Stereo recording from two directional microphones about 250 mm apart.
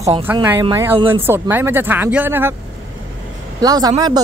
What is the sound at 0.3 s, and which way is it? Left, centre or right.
Speech, centre.